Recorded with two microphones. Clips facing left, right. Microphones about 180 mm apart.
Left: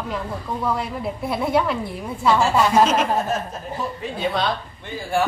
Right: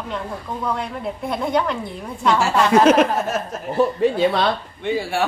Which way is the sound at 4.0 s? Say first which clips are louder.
Right 7 dB; 75° right (ahead or behind).